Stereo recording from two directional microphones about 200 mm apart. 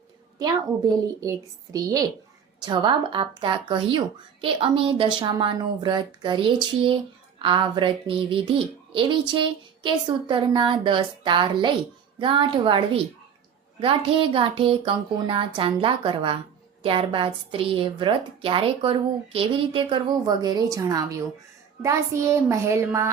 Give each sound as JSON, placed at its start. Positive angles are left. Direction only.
{"t": 0.3, "sound": "a child's voice", "side_deg": -20}